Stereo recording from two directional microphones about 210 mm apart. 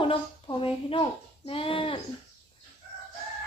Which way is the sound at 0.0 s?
25° left (ahead or behind).